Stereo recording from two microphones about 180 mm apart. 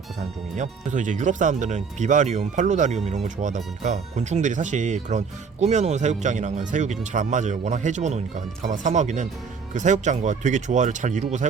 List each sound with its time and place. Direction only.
0.5 s speech: 45° right (ahead or behind)